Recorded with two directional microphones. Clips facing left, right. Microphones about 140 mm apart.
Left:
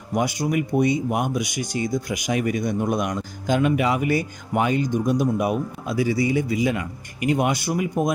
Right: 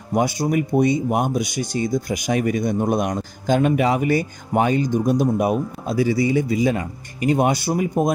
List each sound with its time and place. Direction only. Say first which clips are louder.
0.1 s speech: right 3 dB; 30° right (ahead or behind)